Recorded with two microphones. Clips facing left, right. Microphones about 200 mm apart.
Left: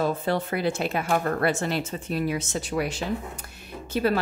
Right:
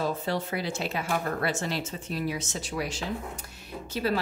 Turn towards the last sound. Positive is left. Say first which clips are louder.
# left 5 dB
turn(degrees=55)  # may be behind; listen again after turning